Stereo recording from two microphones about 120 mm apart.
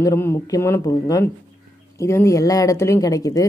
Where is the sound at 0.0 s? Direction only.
25° left (ahead or behind).